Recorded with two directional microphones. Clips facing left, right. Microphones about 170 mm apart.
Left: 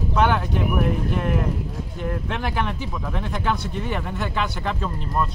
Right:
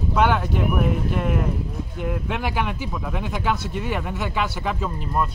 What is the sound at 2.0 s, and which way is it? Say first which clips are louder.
Speech: right 1 dB; 5° right (ahead or behind).